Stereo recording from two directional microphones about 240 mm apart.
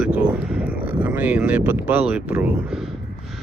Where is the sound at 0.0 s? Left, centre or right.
Centre.